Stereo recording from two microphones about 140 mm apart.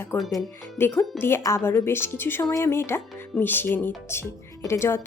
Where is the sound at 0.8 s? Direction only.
15° left (ahead or behind).